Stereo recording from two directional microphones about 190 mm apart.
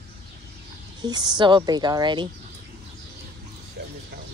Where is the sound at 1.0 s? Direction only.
20° right (ahead or behind).